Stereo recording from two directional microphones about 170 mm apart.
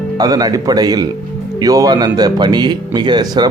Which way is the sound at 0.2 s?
20° right (ahead or behind).